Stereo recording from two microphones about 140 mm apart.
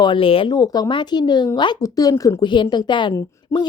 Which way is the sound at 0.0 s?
35° left (ahead or behind).